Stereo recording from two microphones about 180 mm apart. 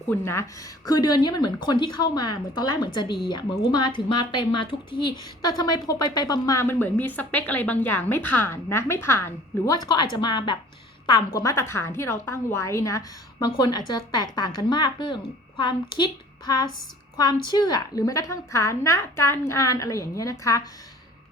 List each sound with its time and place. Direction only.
0.1 s a woman's voice: 15° left (ahead or behind)